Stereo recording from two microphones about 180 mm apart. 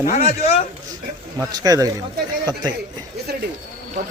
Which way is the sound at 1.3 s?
20° right (ahead or behind).